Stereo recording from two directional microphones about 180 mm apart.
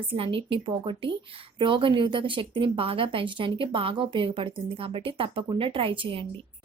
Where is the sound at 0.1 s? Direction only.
30° right (ahead or behind).